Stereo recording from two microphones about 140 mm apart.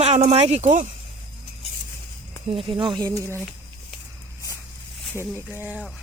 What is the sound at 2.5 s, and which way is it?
Speech, 40° right (ahead or behind).